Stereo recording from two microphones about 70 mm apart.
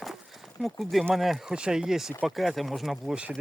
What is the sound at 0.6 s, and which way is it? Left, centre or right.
Speech, centre.